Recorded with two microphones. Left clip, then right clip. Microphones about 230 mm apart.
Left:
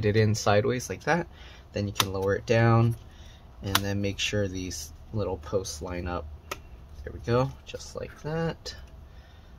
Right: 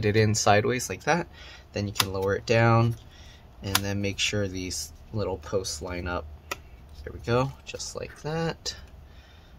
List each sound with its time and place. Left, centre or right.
0.0 s speech: centre